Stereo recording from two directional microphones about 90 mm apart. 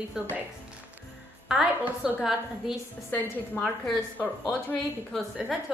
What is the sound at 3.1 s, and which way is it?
Speech, 15° left (ahead or behind).